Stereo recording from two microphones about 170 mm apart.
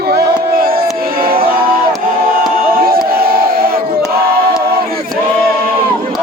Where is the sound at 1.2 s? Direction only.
60° right (ahead or behind).